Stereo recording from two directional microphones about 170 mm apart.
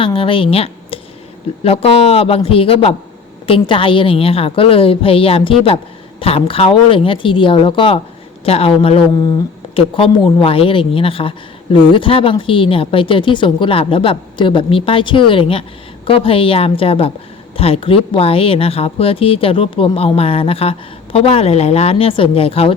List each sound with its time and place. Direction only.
0.0 s a woman's voice: 30° left (ahead or behind)